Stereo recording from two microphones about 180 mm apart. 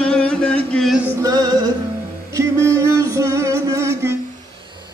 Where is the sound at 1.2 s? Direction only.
20° right (ahead or behind).